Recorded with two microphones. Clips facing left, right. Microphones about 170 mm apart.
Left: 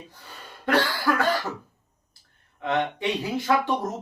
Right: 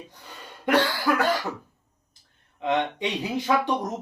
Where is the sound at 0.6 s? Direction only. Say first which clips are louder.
Right 1 dB; 15° right (ahead or behind).